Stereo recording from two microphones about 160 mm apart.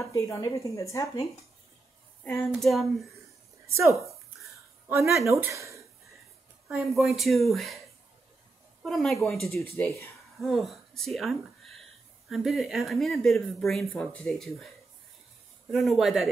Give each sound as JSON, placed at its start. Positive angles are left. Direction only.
{"t": 0.1, "sound": "a woman's voice", "side_deg": 20}
{"t": 2.2, "sound": "speech", "side_deg": 5}
{"t": 3.7, "sound": "speech", "side_deg": -20}
{"t": 6.7, "sound": "speech", "side_deg": 0}
{"t": 8.8, "sound": "speech", "side_deg": 0}
{"t": 9.8, "sound": "speech", "side_deg": 10}
{"t": 10.4, "sound": "speech", "side_deg": 0}
{"t": 15.7, "sound": "speech", "side_deg": 0}